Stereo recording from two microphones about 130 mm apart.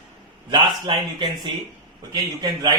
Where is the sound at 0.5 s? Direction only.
35° right (ahead or behind).